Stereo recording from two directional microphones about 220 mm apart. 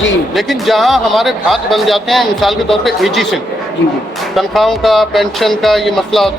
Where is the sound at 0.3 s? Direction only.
Centre (ahead or behind).